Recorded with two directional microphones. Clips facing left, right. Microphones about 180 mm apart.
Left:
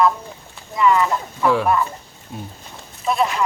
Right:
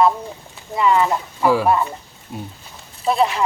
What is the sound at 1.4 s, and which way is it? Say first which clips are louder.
Speech: right 1 dB; 5° right (ahead or behind).